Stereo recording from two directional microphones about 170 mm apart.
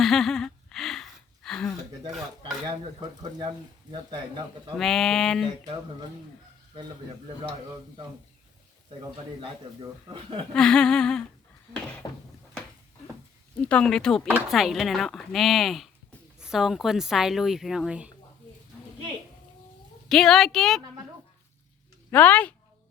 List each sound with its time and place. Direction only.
0.0 s a sound: centre (ahead or behind)
2.6 s speech: 25° right (ahead or behind)
4.8 s a woman's voice: centre (ahead or behind)
8.9 s a man's voice: 30° right (ahead or behind)
10.5 s a woman's voice: 5° left (ahead or behind)
12.0 s a sound: 20° left (ahead or behind)
13.6 s a woman's voice: 5° left (ahead or behind)
20.1 s a woman's voice: centre (ahead or behind)
22.1 s a woman's voice: 10° left (ahead or behind)